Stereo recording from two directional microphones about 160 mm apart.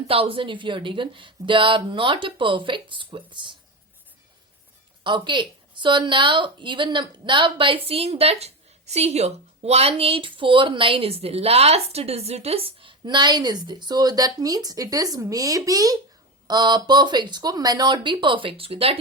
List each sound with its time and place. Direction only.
0.1 s a woman's voice: 35° right (ahead or behind)
5.0 s a woman's voice: 30° right (ahead or behind)